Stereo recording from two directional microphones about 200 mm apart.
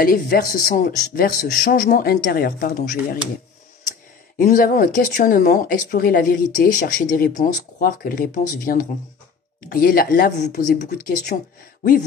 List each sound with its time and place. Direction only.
0.0 s speech: 45° left (ahead or behind)
4.4 s speech: 40° left (ahead or behind)